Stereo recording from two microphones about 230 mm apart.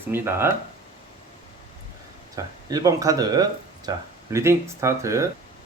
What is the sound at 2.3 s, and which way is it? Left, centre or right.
Speech, centre.